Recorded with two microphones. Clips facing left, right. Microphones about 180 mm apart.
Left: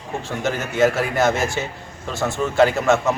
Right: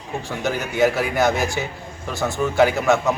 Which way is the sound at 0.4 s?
15° right (ahead or behind).